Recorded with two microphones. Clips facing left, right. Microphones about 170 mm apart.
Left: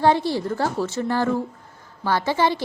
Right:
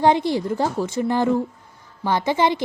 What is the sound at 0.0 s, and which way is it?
A woman's voice, 15° right (ahead or behind).